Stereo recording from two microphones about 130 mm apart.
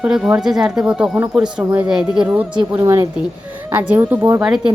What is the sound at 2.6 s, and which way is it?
Speech, 25° right (ahead or behind).